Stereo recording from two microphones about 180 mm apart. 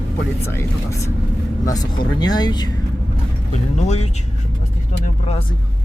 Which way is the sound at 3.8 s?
40° left (ahead or behind).